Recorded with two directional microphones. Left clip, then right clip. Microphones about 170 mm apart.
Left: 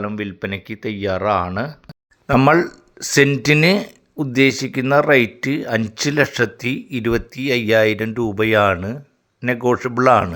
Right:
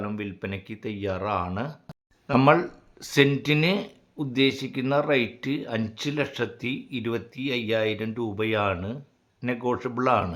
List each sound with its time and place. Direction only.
0.0 s speech: 20° left (ahead or behind)